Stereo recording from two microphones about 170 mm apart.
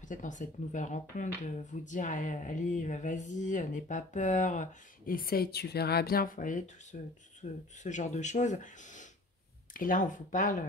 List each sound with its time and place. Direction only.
0.0 s speech: 50° left (ahead or behind)